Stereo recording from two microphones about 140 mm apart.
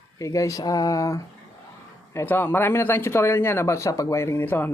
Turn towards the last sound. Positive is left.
turn(degrees=15)  # may be behind; listen again after turning